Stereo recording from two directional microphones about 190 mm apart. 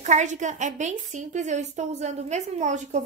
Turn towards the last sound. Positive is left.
turn(degrees=-40)  # may be behind; listen again after turning